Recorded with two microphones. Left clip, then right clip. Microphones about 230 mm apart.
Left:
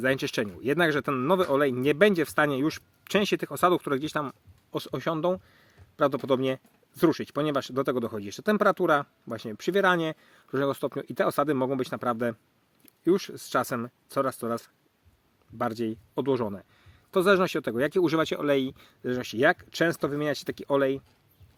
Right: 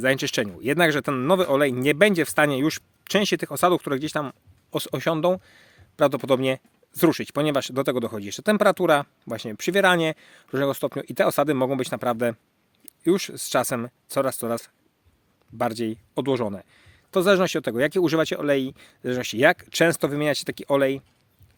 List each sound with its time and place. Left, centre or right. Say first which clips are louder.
0.0 s speech: right 4 dB; right